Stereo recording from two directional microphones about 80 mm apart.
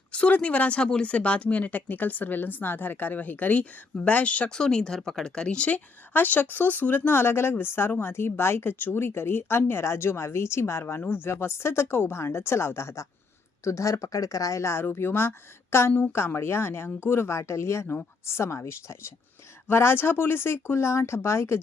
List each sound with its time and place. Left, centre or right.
0.1 s speech: centre; by 21.6 s left